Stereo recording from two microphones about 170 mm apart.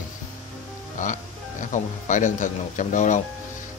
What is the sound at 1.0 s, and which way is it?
A man's voice, 45° left (ahead or behind).